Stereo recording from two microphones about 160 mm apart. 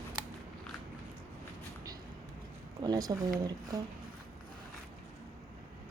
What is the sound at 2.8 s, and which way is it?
Speech, 25° right (ahead or behind).